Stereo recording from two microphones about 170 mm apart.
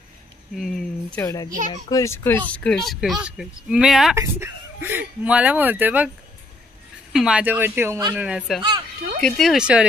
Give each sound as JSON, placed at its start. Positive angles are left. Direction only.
{"t": 0.6, "sound": "speech", "side_deg": 0}
{"t": 1.2, "sound": "a child's voice", "side_deg": 20}
{"t": 4.1, "sound": "speech", "side_deg": -15}
{"t": 7.1, "sound": "speech", "side_deg": -5}